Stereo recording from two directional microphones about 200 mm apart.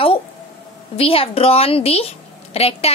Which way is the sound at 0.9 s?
30° left (ahead or behind).